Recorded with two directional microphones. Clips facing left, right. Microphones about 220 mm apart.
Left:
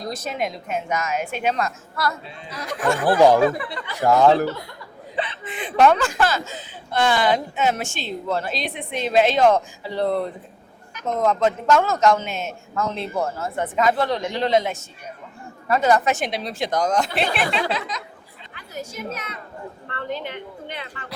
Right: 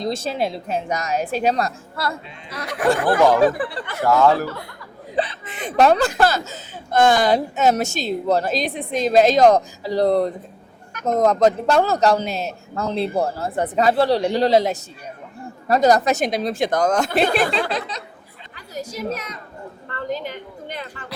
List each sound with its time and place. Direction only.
0.0 s speech: 25° right (ahead or behind)
2.6 s speech: 60° right (ahead or behind)
3.4 s speech: 30° right (ahead or behind)
4.0 s speech: 15° left (ahead or behind)
5.1 s speech: 35° right (ahead or behind)
19.1 s a woman's voice: 40° right (ahead or behind)